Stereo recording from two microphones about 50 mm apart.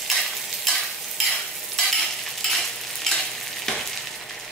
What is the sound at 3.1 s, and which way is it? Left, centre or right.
Stir, centre.